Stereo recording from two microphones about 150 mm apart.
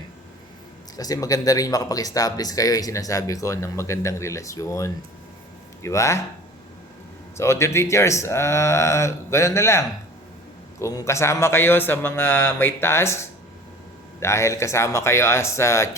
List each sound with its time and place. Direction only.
0.9 s speech: 25° left (ahead or behind)
7.3 s a man's voice: 20° left (ahead or behind)